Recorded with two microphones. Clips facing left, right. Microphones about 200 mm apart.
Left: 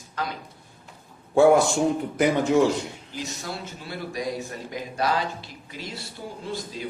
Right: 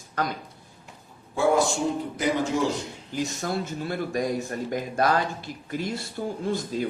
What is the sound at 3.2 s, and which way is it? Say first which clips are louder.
A man's voice: right 6 dB; 50° right (ahead or behind).